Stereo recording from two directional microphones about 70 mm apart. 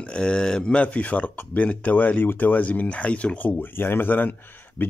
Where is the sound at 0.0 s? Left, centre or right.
Centre.